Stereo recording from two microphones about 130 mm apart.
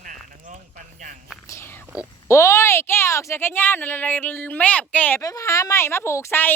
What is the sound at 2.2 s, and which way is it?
Speech, 25° left (ahead or behind).